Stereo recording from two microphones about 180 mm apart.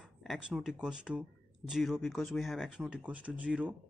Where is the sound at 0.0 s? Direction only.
Centre (ahead or behind).